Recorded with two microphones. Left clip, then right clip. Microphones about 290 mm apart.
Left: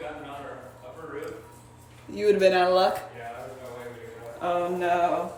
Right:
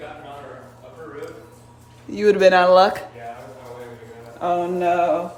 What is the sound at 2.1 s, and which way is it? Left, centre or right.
Speech, right.